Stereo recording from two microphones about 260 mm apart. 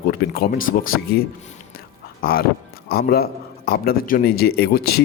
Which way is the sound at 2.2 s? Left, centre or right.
Left.